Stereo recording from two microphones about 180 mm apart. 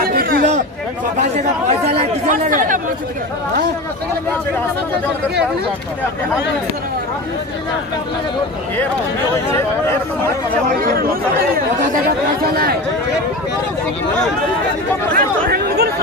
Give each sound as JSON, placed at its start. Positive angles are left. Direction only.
{"t": 0.0, "sound": "a sound", "side_deg": -55}
{"t": 1.9, "sound": "chatter", "side_deg": -40}
{"t": 9.5, "sound": "speech", "side_deg": 15}
{"t": 11.5, "sound": "speech", "side_deg": -45}
{"t": 15.1, "sound": "chatter", "side_deg": -55}